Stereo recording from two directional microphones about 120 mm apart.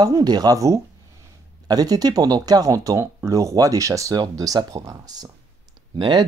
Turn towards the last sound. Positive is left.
turn(degrees=-40)  # may be behind; listen again after turning